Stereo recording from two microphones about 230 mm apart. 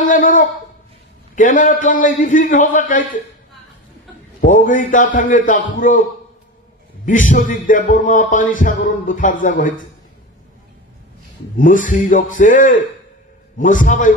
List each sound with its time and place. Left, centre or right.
0.0 s a sound: left
1.3 s music: left
4.4 s music: left
7.1 s music: left
11.5 s music: left